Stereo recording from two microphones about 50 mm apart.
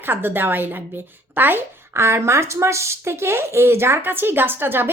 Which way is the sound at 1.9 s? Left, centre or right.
Right.